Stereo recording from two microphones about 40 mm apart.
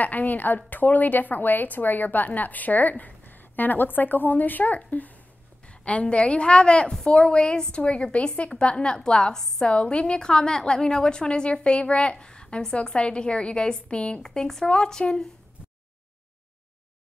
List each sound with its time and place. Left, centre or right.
0.0 s a woman's voice: left
5.7 s a woman's voice: left
14.2 s a woman's voice: centre